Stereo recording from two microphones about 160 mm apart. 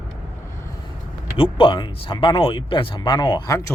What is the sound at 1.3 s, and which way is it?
Speech, 35° left (ahead or behind).